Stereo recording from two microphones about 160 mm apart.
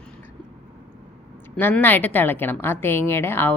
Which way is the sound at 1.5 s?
10° left (ahead or behind).